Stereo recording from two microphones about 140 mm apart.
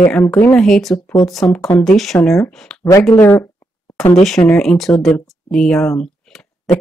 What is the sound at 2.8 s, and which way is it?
Speech, 20° left (ahead or behind).